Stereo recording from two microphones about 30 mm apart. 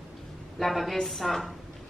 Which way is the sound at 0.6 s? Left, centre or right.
Centre.